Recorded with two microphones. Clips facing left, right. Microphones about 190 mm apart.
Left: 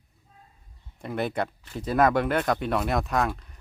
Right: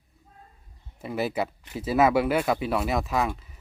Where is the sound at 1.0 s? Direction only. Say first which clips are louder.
Right 1 dB; 5° right (ahead or behind).